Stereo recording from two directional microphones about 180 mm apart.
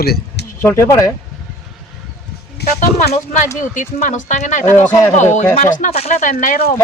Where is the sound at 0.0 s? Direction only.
60° left (ahead or behind).